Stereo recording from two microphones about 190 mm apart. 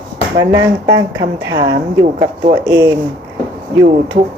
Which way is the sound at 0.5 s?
20° right (ahead or behind).